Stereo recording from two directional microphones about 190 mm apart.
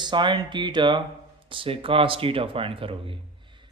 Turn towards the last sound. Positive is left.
turn(degrees=-30)  # may be behind; listen again after turning